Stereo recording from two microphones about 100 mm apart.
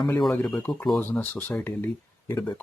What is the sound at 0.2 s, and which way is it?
Speech, centre (ahead or behind).